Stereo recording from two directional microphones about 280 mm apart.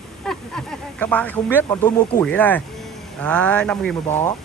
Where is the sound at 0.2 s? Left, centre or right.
Centre.